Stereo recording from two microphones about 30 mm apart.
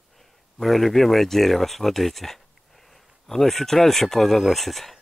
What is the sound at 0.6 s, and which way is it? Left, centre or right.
Speech, centre.